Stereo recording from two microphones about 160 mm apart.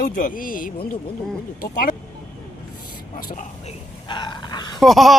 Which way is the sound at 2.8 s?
60° left (ahead or behind).